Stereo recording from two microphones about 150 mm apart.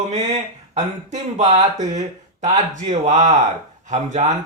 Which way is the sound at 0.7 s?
50° right (ahead or behind).